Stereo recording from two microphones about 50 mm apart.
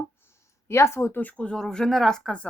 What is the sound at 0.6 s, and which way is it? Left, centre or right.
Speech, left.